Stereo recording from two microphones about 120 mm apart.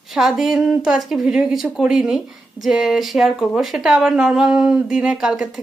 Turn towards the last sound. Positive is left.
turn(degrees=-5)  # may be behind; listen again after turning